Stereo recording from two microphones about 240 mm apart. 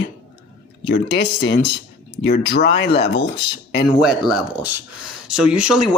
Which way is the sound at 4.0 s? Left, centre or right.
Centre.